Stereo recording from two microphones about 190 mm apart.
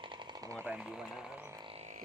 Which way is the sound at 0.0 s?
25° right (ahead or behind).